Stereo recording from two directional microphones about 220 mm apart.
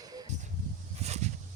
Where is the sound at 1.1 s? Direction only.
30° right (ahead or behind).